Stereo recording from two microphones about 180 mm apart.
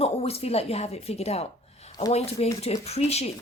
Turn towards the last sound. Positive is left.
turn(degrees=35)  # may be behind; listen again after turning